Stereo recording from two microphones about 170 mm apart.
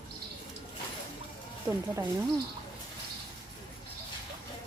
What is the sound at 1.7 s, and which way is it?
Speech, 15° right (ahead or behind).